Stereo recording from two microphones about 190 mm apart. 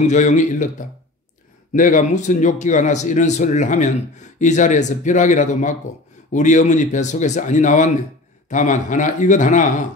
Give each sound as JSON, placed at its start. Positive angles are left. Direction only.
{"t": 0.0, "sound": "speech", "side_deg": 40}